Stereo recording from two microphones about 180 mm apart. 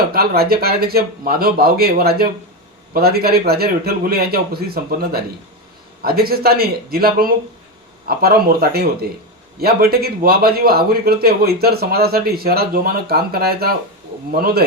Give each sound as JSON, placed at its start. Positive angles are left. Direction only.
{"t": 0.1, "sound": "a man's voice", "side_deg": -60}